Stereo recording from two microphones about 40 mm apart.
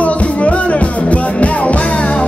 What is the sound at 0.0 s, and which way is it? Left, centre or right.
Music, left.